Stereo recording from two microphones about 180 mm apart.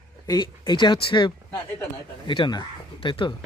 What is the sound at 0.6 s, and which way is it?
Speech, 25° left (ahead or behind).